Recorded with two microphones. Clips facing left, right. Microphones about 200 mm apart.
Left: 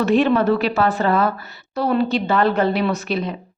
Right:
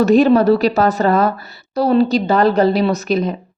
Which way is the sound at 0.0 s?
40° right (ahead or behind).